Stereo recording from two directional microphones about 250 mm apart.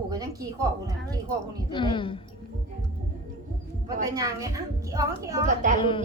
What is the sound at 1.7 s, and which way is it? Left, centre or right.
Speech, centre.